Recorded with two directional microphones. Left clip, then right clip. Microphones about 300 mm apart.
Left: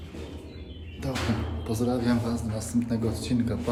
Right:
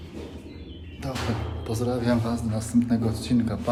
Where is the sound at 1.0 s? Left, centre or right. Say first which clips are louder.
Even; centre.